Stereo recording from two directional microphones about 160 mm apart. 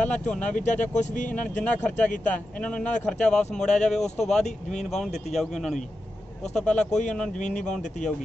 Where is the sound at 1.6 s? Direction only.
10° left (ahead or behind).